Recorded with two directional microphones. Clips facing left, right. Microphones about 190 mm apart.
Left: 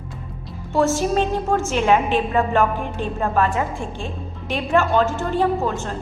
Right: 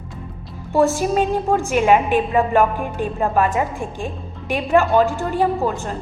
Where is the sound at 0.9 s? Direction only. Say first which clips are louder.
Right 1 dB; 15° right (ahead or behind).